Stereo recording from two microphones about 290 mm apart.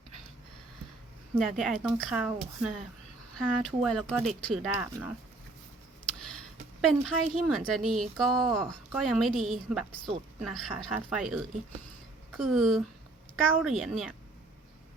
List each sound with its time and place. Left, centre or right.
1.4 s speech: centre
7.0 s speech: centre
12.4 s speech: centre